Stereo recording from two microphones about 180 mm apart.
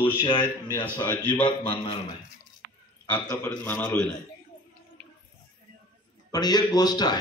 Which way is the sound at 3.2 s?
10° left (ahead or behind).